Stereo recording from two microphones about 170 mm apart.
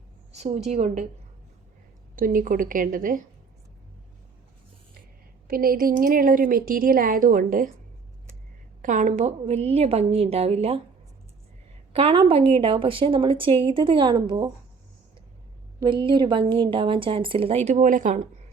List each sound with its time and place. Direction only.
0.3 s a woman's voice: 40° right (ahead or behind)
2.1 s a woman's voice: 55° right (ahead or behind)
5.5 s a woman's voice: 60° right (ahead or behind)
8.8 s a woman's voice: 50° right (ahead or behind)
11.9 s a woman's voice: 30° right (ahead or behind)
15.8 s a woman's voice: 30° right (ahead or behind); by 18.3 s 45° right (ahead or behind)